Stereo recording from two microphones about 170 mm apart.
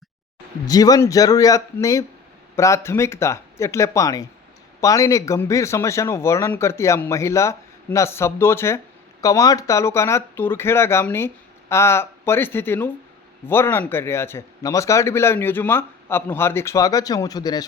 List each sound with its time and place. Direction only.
0.7 s speech: 20° left (ahead or behind)